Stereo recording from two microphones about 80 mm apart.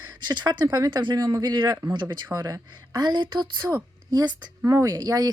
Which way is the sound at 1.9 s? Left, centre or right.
Right.